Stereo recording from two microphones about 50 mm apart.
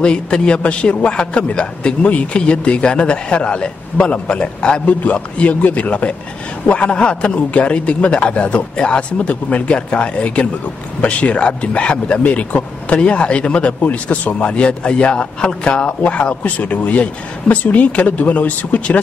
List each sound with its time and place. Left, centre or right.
0.0 s a man's voice: centre